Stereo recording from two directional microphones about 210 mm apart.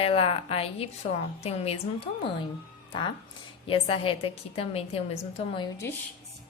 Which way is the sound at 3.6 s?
25° left (ahead or behind).